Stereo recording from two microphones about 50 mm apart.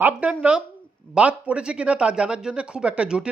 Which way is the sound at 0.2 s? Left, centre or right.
Right.